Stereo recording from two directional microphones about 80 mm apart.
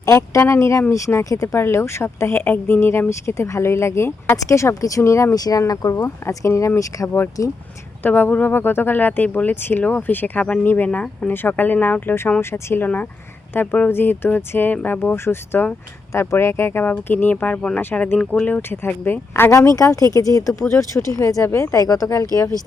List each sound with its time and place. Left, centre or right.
0.0 s speech: left
1.5 s speech: left
2.4 s speech: left
6.0 s speech: left
8.0 s speech: left
19.5 s speech: left
21.4 s speech: left
21.8 s speech: left